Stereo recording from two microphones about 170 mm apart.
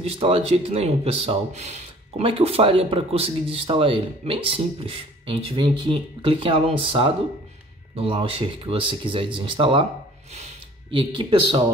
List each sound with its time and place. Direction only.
0.2 s speech: 35° right (ahead or behind)